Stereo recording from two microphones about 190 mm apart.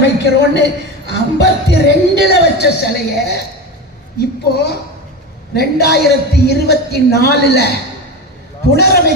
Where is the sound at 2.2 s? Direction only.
60° left (ahead or behind).